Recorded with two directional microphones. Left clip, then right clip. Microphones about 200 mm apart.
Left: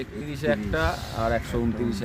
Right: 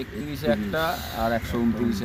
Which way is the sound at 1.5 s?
25° left (ahead or behind).